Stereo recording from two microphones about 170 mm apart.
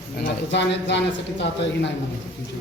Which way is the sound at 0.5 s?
90° left.